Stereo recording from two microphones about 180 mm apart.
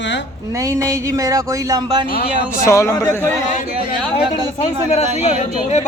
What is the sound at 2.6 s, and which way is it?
Speech, 15° left (ahead or behind).